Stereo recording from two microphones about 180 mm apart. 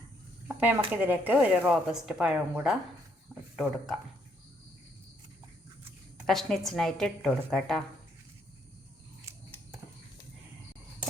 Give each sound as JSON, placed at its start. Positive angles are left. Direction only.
{"t": 0.4, "sound": "a sound", "side_deg": -10}
{"t": 0.9, "sound": "a woman's voice", "side_deg": -10}
{"t": 6.2, "sound": "a woman's voice", "side_deg": 0}
{"t": 9.3, "sound": "scissors", "side_deg": -15}